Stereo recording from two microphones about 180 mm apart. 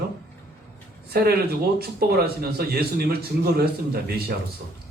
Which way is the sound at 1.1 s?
60° right (ahead or behind).